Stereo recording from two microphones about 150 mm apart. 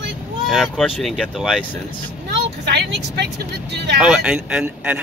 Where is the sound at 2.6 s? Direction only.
90° right.